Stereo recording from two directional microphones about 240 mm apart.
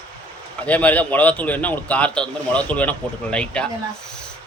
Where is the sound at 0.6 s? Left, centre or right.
Centre.